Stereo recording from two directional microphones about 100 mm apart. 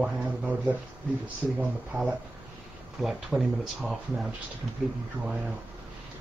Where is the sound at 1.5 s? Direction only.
5° right (ahead or behind).